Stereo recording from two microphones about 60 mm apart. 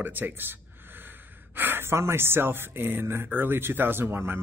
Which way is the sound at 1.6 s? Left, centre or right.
Right.